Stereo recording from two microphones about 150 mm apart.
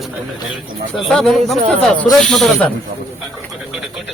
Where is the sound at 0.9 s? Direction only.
5° left (ahead or behind).